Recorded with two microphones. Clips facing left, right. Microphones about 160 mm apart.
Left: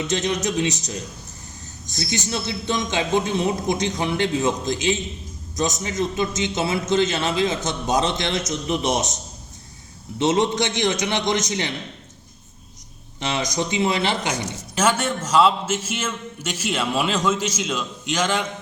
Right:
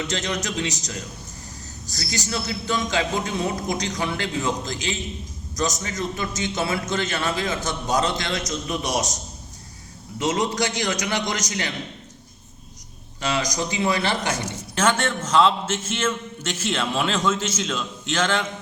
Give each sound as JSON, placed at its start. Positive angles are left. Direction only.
{"t": 0.0, "sound": "a man's voice", "side_deg": 20}
{"t": 10.2, "sound": "a man's voice", "side_deg": 25}
{"t": 13.1, "sound": "speech", "side_deg": 20}